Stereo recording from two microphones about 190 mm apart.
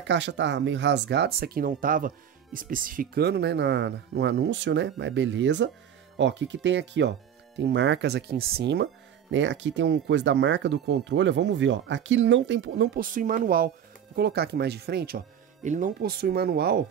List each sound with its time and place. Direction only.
0.0 s speech: 70° right (ahead or behind)
9.3 s speech: 75° right (ahead or behind); by 16.8 s 55° right (ahead or behind)